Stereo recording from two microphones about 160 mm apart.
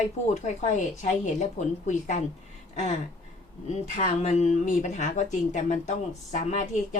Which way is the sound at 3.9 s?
45° left (ahead or behind).